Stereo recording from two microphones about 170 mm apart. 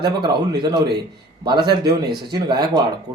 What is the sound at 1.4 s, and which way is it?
Speech, 25° right (ahead or behind).